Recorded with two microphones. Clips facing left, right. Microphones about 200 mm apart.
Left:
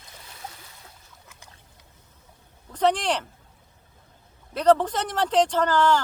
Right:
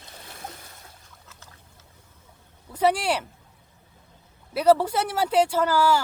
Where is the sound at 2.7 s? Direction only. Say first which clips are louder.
Even; 10° right (ahead or behind).